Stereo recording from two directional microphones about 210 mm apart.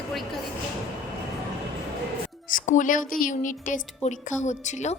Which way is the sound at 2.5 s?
40° left (ahead or behind).